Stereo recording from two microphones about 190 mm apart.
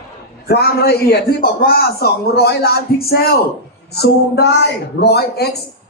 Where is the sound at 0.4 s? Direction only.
55° left (ahead or behind).